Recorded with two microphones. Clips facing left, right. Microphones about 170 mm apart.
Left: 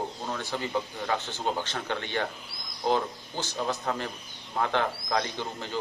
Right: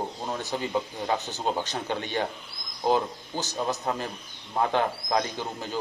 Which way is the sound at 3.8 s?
20° right (ahead or behind).